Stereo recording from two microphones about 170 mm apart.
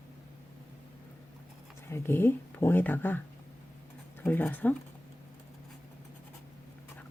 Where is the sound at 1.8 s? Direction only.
15° left (ahead or behind).